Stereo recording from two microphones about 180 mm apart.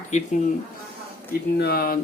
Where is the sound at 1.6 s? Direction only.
60° left (ahead or behind).